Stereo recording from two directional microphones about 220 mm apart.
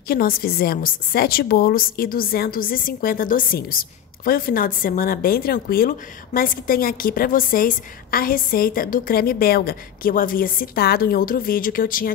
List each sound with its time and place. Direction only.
0.1 s a woman's voice: 40° left (ahead or behind)